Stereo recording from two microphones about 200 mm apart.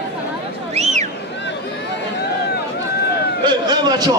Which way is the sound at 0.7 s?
35° right (ahead or behind).